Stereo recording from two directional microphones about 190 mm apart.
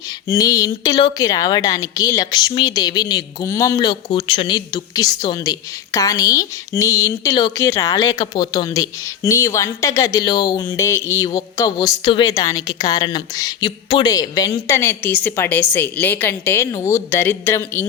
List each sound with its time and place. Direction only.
0.3 s a woman's voice: 20° left (ahead or behind)